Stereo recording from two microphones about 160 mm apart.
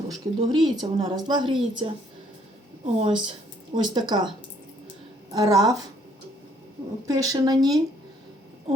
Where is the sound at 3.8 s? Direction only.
25° right (ahead or behind).